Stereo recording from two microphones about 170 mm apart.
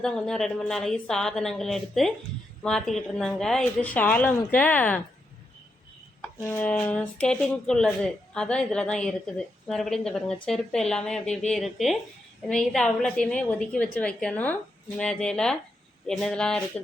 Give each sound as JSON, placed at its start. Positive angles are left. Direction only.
{"t": 0.0, "sound": "a woman's voice", "side_deg": 5}
{"t": 6.5, "sound": "speech", "side_deg": 10}